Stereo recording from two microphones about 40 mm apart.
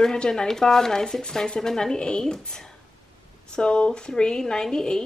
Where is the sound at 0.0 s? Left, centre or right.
Centre.